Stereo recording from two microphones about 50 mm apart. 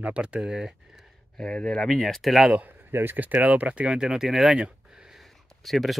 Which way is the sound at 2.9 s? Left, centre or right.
Right.